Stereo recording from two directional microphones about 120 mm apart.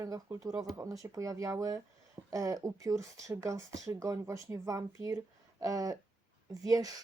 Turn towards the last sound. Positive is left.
turn(degrees=-30)  # may be behind; listen again after turning